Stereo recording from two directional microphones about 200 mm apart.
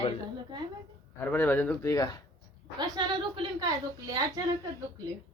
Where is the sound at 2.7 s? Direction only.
20° right (ahead or behind).